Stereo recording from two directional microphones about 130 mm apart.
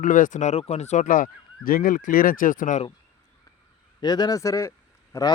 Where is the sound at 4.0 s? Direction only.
35° left (ahead or behind).